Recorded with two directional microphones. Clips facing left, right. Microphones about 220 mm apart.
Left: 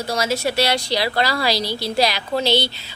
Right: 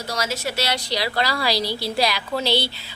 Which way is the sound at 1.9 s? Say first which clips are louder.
Left 5 dB; 25° left (ahead or behind).